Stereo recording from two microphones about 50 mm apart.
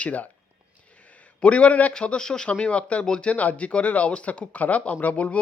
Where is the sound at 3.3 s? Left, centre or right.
Left.